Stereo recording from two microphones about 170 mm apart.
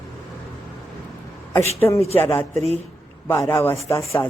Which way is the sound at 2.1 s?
10° left (ahead or behind).